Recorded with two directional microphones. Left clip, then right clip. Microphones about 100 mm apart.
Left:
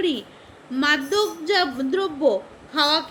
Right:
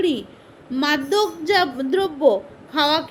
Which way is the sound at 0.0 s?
50° right (ahead or behind).